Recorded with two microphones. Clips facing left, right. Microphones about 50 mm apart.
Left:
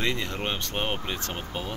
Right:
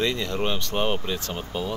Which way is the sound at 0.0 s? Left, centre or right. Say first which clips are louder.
Right 4 dB; left.